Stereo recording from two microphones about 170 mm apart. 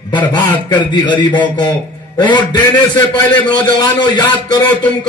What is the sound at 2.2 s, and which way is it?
A man's voice, 25° left (ahead or behind).